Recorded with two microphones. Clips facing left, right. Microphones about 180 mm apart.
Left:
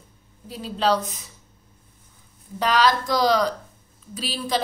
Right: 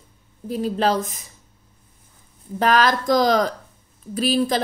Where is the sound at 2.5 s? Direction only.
50° right (ahead or behind).